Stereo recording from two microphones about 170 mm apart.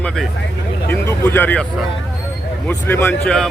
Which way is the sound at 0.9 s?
15° left (ahead or behind).